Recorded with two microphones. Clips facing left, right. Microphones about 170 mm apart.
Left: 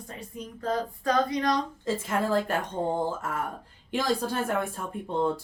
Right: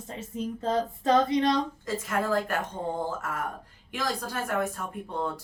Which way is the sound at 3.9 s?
30° left (ahead or behind).